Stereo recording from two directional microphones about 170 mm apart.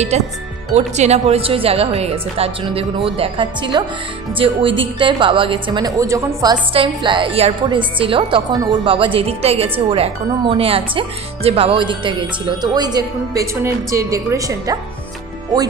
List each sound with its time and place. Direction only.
0.1 s a woman's voice: 40° right (ahead or behind); by 14.8 s 20° right (ahead or behind)